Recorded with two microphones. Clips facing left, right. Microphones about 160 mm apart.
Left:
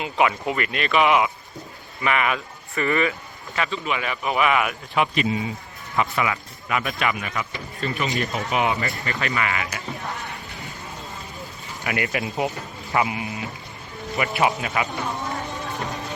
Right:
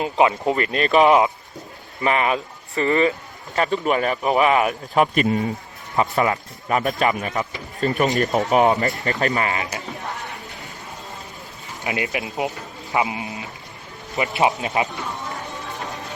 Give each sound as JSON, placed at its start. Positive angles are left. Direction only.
{"t": 0.0, "sound": "speech", "side_deg": -30}
{"t": 11.8, "sound": "speech", "side_deg": -20}